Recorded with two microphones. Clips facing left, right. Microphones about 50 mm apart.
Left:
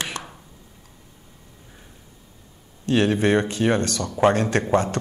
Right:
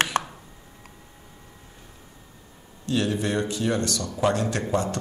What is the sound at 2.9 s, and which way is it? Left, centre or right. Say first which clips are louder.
A man's voice: left 6 dB; left.